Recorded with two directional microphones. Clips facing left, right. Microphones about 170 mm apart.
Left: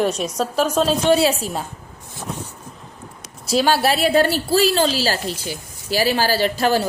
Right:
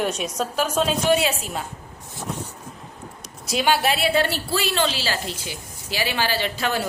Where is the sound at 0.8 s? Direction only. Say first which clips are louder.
Left 4 dB; 35° left (ahead or behind).